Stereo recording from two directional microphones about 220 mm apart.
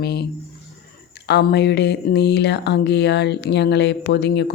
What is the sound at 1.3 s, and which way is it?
A woman's voice, 50° left (ahead or behind).